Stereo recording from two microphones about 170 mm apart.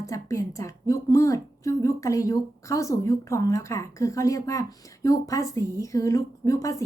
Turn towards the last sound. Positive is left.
turn(degrees=20)  # may be behind; listen again after turning